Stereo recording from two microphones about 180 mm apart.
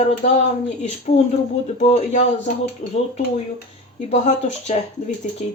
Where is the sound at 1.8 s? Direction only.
40° left (ahead or behind).